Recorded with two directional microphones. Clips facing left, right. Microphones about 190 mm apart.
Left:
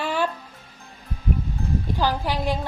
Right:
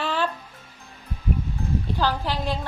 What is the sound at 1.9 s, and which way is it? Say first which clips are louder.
Speech: left 2 dB; 10° left (ahead or behind).